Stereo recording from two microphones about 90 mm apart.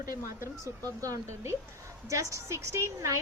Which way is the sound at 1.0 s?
35° right (ahead or behind).